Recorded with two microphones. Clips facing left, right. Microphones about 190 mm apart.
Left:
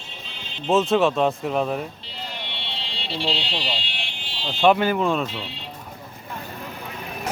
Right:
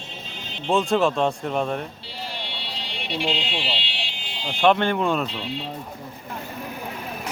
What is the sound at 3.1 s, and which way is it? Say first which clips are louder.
Speech: right 1 dB; 35° left (ahead or behind).